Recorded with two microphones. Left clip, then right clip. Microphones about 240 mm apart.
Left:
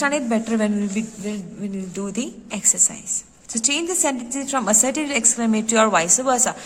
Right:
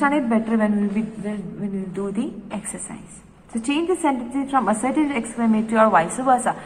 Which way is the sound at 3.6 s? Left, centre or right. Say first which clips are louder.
Right 1 dB; left.